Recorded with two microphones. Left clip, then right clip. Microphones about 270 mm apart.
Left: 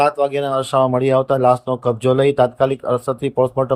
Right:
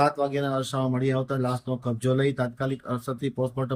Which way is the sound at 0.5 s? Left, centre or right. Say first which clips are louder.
Left 12 dB; left.